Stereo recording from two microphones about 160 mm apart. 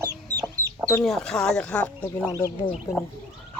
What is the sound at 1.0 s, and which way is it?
Speech, 5° left (ahead or behind).